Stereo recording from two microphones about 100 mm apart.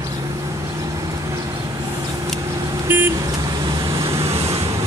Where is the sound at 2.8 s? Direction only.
20° right (ahead or behind).